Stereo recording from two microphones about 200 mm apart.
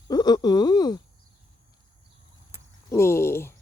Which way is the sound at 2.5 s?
15° left (ahead or behind).